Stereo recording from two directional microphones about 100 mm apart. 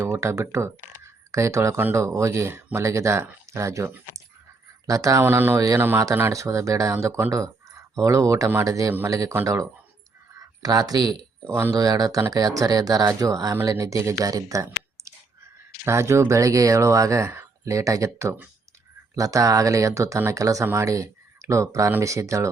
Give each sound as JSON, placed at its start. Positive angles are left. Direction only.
{"t": 0.1, "sound": "speech", "side_deg": -30}
{"t": 5.2, "sound": "speech", "side_deg": -25}
{"t": 5.5, "sound": "speech", "side_deg": -35}
{"t": 10.6, "sound": "speech", "side_deg": -40}